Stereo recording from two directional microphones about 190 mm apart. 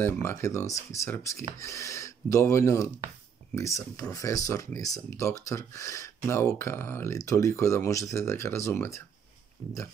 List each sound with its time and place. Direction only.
0.0 s speech: 15° left (ahead or behind)